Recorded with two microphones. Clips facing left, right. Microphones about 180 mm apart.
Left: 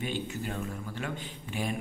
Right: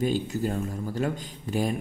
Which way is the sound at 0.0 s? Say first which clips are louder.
Right 8 dB; 40° right (ahead or behind).